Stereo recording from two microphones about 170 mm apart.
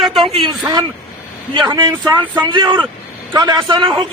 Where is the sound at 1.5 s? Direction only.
25° right (ahead or behind).